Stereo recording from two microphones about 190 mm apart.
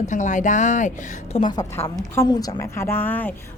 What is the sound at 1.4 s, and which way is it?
A woman's voice, 20° left (ahead or behind).